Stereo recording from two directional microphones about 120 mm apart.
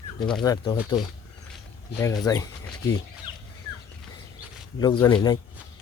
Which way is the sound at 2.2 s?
30° left (ahead or behind).